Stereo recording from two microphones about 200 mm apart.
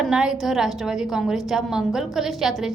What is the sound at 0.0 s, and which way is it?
A woman's voice, 5° right (ahead or behind).